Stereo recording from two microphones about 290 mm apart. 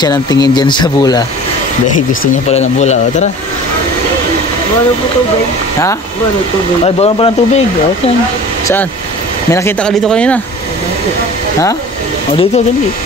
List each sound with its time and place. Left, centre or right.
0.0 s speech: centre
2.5 s speech: left
6.8 s speech: centre
9.5 s speech: centre